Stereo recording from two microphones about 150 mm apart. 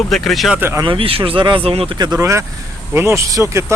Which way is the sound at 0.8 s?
35° right (ahead or behind).